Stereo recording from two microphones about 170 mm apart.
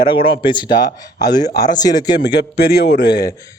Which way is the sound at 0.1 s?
30° left (ahead or behind).